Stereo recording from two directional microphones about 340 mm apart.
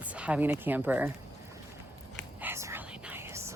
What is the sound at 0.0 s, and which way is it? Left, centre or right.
Speech, centre.